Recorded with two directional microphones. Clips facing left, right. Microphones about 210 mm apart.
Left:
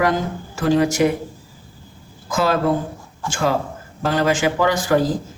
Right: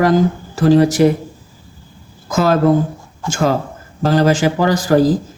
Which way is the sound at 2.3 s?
45° right (ahead or behind).